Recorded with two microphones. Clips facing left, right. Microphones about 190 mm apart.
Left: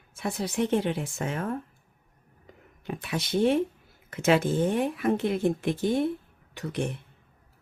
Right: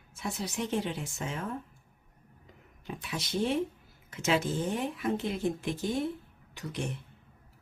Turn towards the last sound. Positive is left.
turn(degrees=60)  # may be behind; listen again after turning